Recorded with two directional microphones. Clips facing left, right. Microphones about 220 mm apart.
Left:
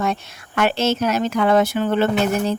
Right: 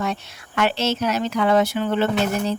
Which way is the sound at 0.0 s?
50° left (ahead or behind).